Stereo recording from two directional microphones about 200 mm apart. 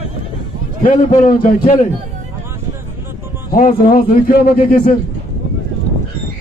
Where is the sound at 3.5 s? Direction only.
45° left (ahead or behind).